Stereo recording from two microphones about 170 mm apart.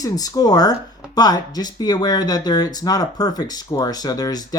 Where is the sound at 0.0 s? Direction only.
20° left (ahead or behind).